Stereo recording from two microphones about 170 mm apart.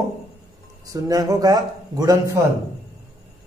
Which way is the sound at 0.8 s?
20° right (ahead or behind).